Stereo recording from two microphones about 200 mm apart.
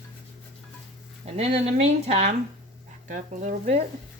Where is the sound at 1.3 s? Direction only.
30° right (ahead or behind).